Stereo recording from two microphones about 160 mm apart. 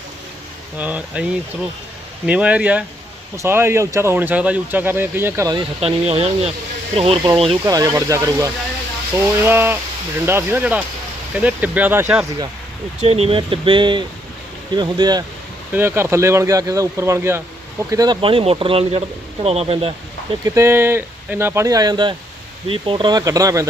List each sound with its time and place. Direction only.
0.8 s speech: 10° right (ahead or behind)
5.5 s a man's voice: 40° right (ahead or behind)
7.6 s speech: 20° right (ahead or behind)
13.0 s a man's voice: 40° right (ahead or behind)
15.7 s speech: 15° right (ahead or behind)
17.9 s a man's voice: 25° right (ahead or behind)
20.4 s speech: 15° right (ahead or behind)